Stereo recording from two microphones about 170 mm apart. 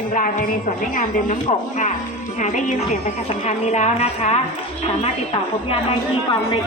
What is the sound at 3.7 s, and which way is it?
Speech, 40° left (ahead or behind).